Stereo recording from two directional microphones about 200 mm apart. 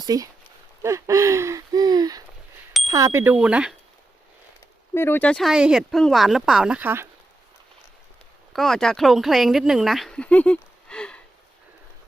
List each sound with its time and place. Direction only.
0.0 s speech: 20° right (ahead or behind)
4.9 s speech: 10° left (ahead or behind); by 7.1 s 10° right (ahead or behind)
8.5 s speech: centre (ahead or behind)